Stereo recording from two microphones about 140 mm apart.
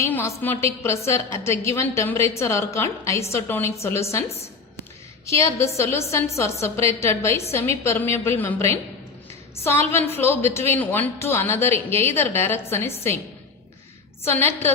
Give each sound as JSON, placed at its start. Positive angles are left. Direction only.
{"t": 0.0, "sound": "a woman's voice", "side_deg": 20}
{"t": 5.3, "sound": "a woman's voice", "side_deg": 20}
{"t": 14.3, "sound": "a woman's voice", "side_deg": 15}